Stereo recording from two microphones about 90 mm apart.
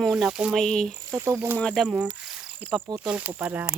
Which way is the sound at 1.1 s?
35° right (ahead or behind).